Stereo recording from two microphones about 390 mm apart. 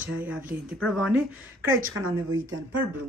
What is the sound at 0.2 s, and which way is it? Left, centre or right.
Speech, centre.